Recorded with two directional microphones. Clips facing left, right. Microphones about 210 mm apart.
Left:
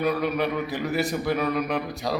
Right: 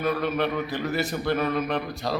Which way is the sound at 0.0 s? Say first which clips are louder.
Left 1 dB; centre (ahead or behind).